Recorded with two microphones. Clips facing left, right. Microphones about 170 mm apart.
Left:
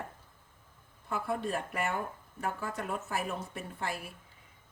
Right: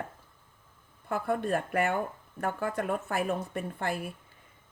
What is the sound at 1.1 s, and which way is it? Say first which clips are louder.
A woman's voice: right 4 dB; 60° right (ahead or behind).